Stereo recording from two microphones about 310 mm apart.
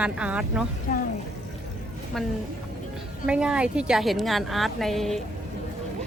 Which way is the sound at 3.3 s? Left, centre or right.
Centre.